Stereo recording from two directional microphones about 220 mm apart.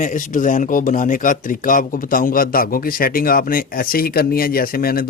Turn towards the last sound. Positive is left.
turn(degrees=40)  # may be behind; listen again after turning